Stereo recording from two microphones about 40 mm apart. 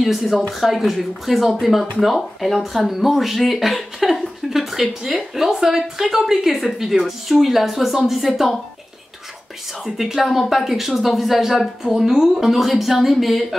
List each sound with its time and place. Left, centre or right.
0.0 s speech: centre
9.8 s speech: centre